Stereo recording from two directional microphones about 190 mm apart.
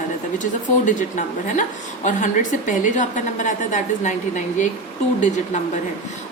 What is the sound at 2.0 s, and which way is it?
A woman's voice, 40° left (ahead or behind).